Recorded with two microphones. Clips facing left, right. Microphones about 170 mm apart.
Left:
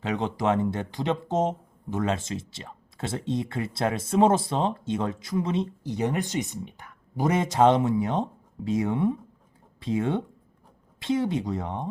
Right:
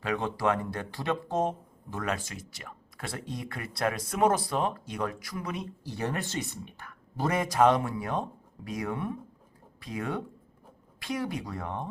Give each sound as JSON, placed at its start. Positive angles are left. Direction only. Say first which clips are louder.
{"t": 0.0, "sound": "speech", "louder": "left 2 dB", "side_deg": 20}